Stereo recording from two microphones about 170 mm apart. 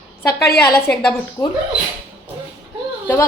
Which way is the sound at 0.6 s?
15° left (ahead or behind).